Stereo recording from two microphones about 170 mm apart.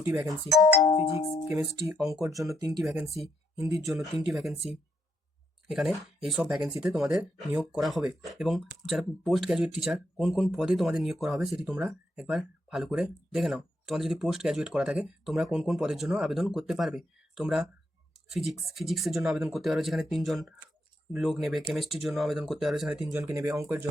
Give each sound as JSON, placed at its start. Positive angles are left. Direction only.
{"t": 0.0, "sound": "speech", "side_deg": -15}
{"t": 2.9, "sound": "speech", "side_deg": -10}
{"t": 23.1, "sound": "speech", "side_deg": -15}